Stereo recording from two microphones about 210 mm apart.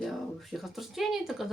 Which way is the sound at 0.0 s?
Centre (ahead or behind).